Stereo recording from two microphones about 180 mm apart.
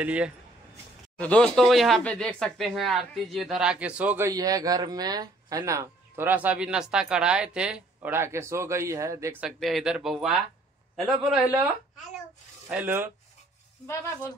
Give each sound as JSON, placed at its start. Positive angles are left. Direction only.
{"t": 0.0, "sound": "speech", "side_deg": -5}
{"t": 1.1, "sound": "speech", "side_deg": 5}
{"t": 4.3, "sound": "speech", "side_deg": -20}
{"t": 9.4, "sound": "speech", "side_deg": 0}